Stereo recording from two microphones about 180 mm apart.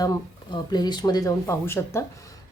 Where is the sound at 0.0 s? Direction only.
20° left (ahead or behind).